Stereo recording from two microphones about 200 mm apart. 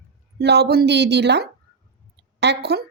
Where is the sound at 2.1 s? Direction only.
55° right (ahead or behind).